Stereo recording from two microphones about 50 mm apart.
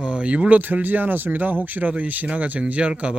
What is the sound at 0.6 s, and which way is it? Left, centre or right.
Speech, right.